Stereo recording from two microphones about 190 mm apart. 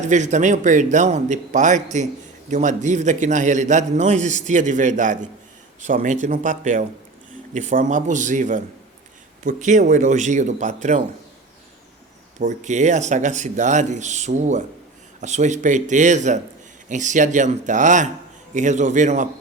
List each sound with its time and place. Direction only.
0.0 s a man's voice: 40° right (ahead or behind)
12.4 s a man's voice: 40° right (ahead or behind)